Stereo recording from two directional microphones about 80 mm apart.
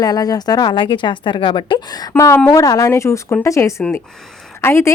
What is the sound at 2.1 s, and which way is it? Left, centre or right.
Speech, left.